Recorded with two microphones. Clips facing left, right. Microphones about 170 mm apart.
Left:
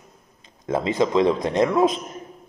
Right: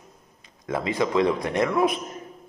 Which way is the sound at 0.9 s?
25° left (ahead or behind).